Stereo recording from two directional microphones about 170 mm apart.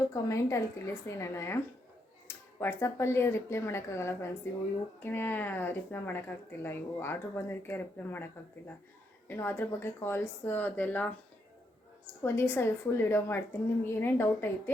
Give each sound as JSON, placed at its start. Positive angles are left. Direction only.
{"t": 0.1, "sound": "speech", "side_deg": 20}
{"t": 12.2, "sound": "speech", "side_deg": 15}